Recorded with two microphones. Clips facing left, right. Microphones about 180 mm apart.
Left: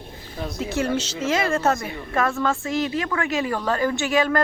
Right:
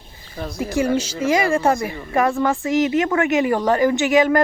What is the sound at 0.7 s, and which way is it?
Speech, 10° right (ahead or behind).